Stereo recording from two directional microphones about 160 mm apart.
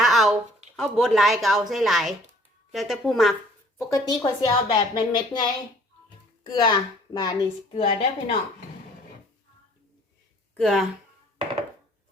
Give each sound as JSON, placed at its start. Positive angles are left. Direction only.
{"t": 0.0, "sound": "a sound", "side_deg": 0}
{"t": 0.8, "sound": "speech", "side_deg": 0}
{"t": 3.8, "sound": "a woman's voice", "side_deg": 20}
{"t": 10.6, "sound": "speech", "side_deg": 0}